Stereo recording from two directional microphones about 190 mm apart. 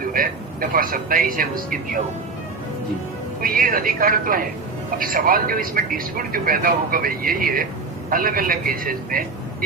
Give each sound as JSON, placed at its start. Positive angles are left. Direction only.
{"t": 0.0, "sound": "a man's voice", "side_deg": -50}
{"t": 3.4, "sound": "speech", "side_deg": -50}